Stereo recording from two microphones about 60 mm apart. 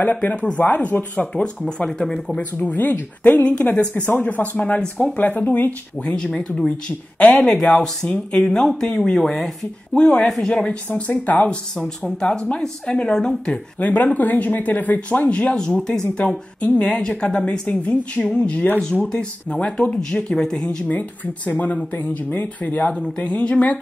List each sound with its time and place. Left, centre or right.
0.0 s a woman's voice: left; by 2.3 s centre
2.5 s a woman's voice: left
10.9 s a woman's voice: left; by 13.6 s centre
13.7 s a woman's voice: left
15.5 s a woman's voice: centre
21.5 s a woman's voice: left